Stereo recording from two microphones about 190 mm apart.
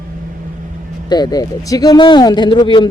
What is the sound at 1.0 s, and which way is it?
Speech, 20° left (ahead or behind).